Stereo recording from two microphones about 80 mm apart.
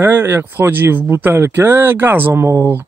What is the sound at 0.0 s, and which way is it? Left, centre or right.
Speech, right.